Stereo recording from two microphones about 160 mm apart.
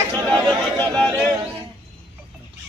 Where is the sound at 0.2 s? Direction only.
25° right (ahead or behind).